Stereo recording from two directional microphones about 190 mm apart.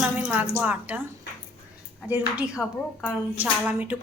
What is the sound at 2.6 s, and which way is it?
Speech, 15° left (ahead or behind).